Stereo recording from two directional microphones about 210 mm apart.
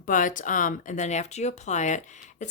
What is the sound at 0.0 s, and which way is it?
Speech, 40° left (ahead or behind).